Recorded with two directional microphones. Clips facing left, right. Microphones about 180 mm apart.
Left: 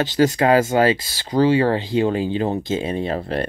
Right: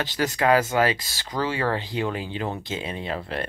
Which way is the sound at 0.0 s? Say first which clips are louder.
Left 7 dB; 35° left (ahead or behind).